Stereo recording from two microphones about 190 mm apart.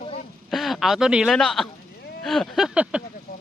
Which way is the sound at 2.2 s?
Centre (ahead or behind).